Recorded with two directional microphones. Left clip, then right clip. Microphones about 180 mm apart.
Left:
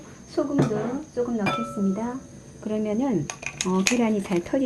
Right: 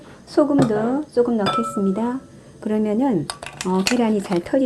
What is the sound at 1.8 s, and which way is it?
Speech, 40° right (ahead or behind).